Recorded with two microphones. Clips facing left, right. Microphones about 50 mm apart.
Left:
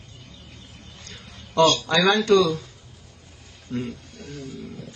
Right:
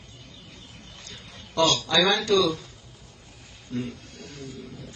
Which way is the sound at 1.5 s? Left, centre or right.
Left.